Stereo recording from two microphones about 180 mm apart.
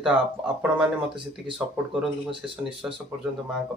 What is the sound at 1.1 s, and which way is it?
Speech, 30° right (ahead or behind).